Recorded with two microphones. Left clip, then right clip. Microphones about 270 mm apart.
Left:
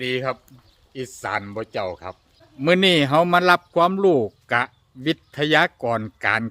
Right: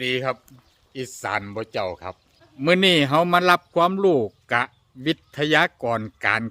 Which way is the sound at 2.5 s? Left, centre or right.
Centre.